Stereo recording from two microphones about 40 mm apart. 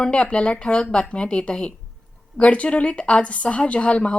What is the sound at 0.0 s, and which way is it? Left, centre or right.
A woman's voice, left.